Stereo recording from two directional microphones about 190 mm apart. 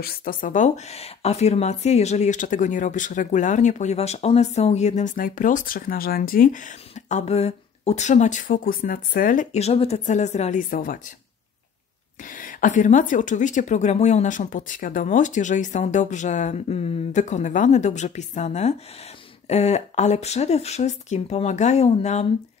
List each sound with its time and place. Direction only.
0.0 s speech: 50° left (ahead or behind)
12.3 s speech: 45° left (ahead or behind)